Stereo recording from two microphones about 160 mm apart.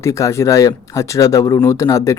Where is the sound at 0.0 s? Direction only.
20° left (ahead or behind).